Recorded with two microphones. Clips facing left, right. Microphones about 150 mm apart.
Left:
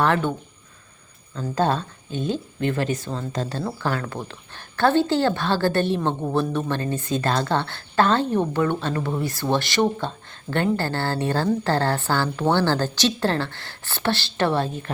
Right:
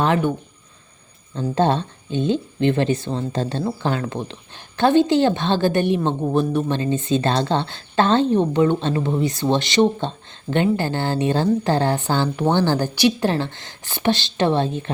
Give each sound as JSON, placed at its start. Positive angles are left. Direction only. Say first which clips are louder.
{"t": 0.0, "sound": "a woman's voice", "louder": "right 2 dB", "side_deg": -15}
{"t": 1.4, "sound": "a woman's voice", "louder": "right 3 dB", "side_deg": -25}